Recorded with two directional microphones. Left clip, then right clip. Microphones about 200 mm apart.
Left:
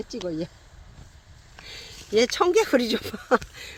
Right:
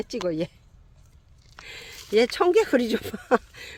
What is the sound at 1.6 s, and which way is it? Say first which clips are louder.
Speech: right 1 dB; 30° right (ahead or behind).